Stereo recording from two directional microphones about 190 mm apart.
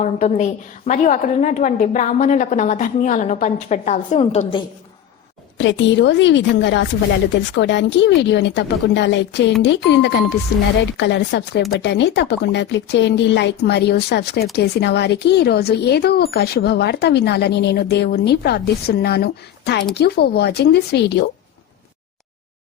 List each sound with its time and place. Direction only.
0.0 s a woman's voice: 35° left (ahead or behind)
5.5 s a woman's voice: 75° left (ahead or behind)